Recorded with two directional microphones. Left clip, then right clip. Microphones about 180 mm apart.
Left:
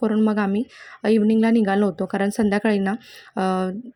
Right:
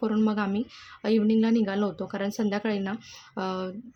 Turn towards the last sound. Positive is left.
turn(degrees=35)  # may be behind; listen again after turning